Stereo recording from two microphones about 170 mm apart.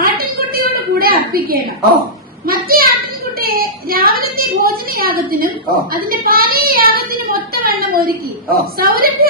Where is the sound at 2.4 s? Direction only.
60° right (ahead or behind).